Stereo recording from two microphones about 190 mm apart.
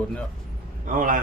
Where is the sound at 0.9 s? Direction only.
45° right (ahead or behind).